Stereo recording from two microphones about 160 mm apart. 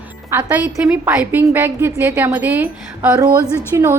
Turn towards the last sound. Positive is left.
turn(degrees=-20)  # may be behind; listen again after turning